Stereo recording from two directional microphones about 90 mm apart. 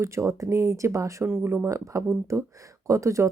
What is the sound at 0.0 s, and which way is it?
Speech, 35° right (ahead or behind).